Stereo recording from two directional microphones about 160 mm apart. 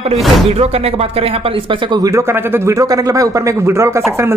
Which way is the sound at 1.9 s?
20° right (ahead or behind).